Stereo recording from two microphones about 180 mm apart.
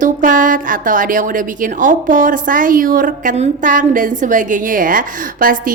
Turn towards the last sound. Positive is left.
turn(degrees=-50)  # may be behind; listen again after turning